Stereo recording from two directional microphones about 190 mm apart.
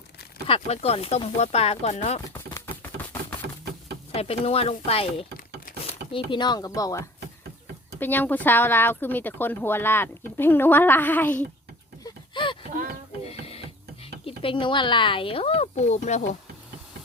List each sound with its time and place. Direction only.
0.4 s speech: 30° left (ahead or behind)
2.3 s a sound: 15° left (ahead or behind)
4.1 s speech: 30° left (ahead or behind); by 11.3 s 10° left (ahead or behind)
12.3 s a sound: 25° left (ahead or behind)
13.2 s music: 30° left (ahead or behind)
14.3 s speech: 25° left (ahead or behind)